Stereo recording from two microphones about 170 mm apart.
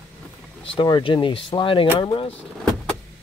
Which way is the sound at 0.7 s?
30° left (ahead or behind).